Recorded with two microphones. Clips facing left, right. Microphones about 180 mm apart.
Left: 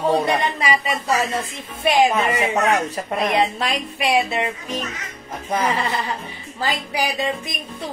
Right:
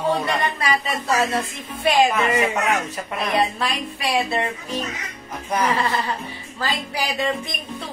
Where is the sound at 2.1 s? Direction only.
35° left (ahead or behind).